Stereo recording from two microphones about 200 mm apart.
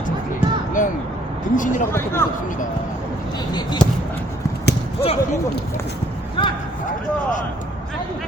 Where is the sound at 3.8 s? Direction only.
5° left (ahead or behind).